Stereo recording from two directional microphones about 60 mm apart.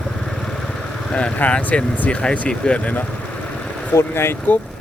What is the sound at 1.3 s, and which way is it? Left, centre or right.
Speech, left.